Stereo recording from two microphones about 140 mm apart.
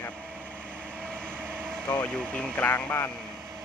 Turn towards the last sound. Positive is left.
turn(degrees=10)  # may be behind; listen again after turning